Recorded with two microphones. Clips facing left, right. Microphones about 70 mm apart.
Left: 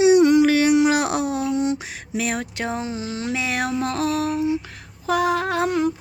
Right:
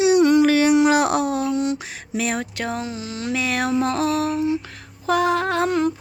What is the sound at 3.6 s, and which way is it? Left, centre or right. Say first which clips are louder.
Music: right 4 dB; centre.